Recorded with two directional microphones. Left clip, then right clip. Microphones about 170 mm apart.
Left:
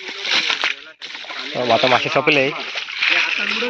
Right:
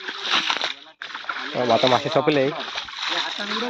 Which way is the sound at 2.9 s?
45° right (ahead or behind).